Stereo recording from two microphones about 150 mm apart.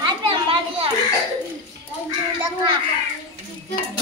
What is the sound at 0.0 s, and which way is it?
Children playing, 35° right (ahead or behind).